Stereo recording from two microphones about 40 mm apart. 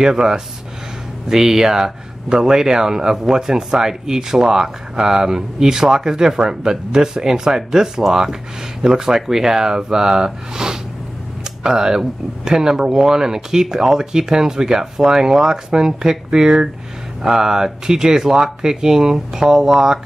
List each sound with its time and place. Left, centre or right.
0.0 s speech: centre